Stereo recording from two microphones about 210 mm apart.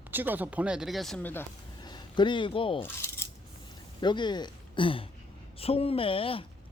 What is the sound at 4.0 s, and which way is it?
Speech, 20° left (ahead or behind).